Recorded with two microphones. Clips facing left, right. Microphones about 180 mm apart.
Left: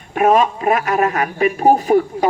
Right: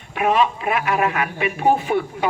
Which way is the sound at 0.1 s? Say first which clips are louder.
Left 5 dB; 45° left (ahead or behind).